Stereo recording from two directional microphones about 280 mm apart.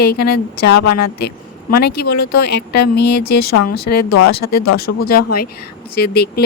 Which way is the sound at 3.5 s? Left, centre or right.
Left.